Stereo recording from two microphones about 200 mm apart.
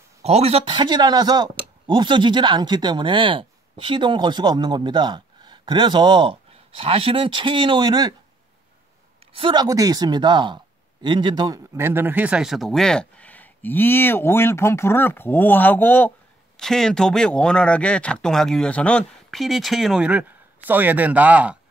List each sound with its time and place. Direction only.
0.2 s speech: 30° right (ahead or behind)
9.3 s speech: 25° right (ahead or behind); by 21.5 s 5° right (ahead or behind)